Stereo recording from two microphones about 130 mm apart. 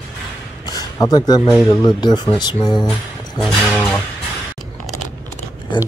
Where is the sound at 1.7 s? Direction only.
35° left (ahead or behind).